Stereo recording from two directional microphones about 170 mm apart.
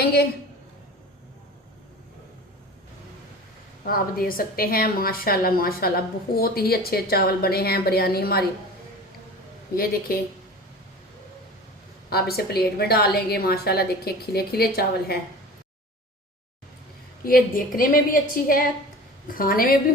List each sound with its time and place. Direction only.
0.0 s a sound: 65° left (ahead or behind)
3.8 s a woman's voice: 60° left (ahead or behind)
12.1 s a woman's voice: 65° left (ahead or behind)
17.2 s a woman's voice: 60° left (ahead or behind)